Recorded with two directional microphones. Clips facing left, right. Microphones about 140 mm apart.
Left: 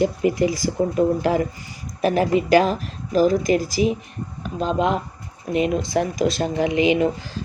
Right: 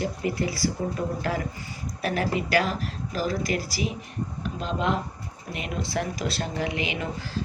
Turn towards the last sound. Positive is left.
turn(degrees=20)  # may be behind; listen again after turning